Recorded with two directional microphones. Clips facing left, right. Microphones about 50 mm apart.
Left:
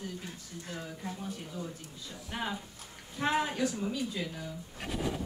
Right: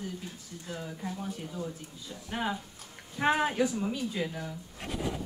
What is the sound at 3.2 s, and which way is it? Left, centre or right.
Speech, right.